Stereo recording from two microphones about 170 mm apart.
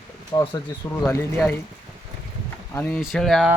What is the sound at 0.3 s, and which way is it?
Speech, 25° left (ahead or behind).